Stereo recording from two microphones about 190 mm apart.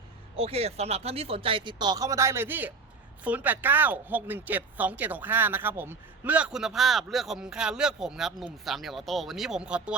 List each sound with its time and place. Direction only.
0.3 s speech: 30° right (ahead or behind); by 9.9 s 5° right (ahead or behind)